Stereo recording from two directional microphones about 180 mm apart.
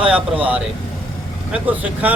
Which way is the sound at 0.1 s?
10° right (ahead or behind).